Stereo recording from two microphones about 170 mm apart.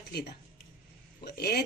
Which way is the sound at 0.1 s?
75° left (ahead or behind).